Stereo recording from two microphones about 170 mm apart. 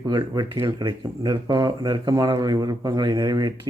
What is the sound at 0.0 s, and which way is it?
Speech, 25° right (ahead or behind).